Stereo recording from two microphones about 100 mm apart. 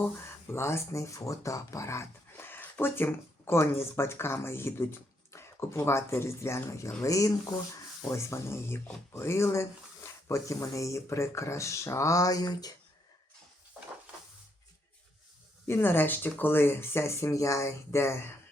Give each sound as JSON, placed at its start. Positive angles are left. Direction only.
{"t": 0.4, "sound": "speech", "side_deg": 25}
{"t": 15.6, "sound": "speech", "side_deg": 25}